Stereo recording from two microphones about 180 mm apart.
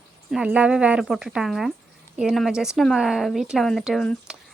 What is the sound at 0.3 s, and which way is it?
A woman's voice, 5° right (ahead or behind).